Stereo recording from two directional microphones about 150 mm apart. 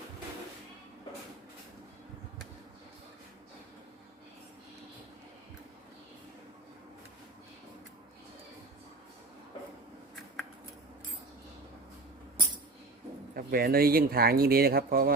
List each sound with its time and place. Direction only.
13.3 s speech: 80° right